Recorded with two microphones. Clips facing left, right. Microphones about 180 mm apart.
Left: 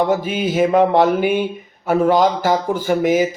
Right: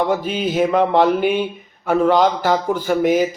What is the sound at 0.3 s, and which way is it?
Speech, 10° left (ahead or behind).